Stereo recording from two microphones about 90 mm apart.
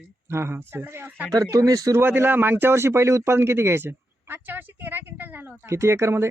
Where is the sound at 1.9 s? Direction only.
25° right (ahead or behind).